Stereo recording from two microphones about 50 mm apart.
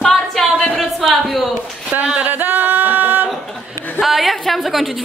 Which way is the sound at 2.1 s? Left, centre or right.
Right.